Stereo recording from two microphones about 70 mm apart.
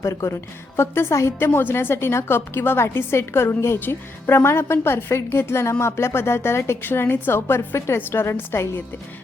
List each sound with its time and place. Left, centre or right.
0.0 s a woman's voice: left